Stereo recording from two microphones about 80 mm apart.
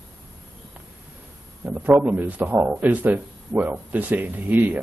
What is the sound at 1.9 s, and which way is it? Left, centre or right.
Speech, centre.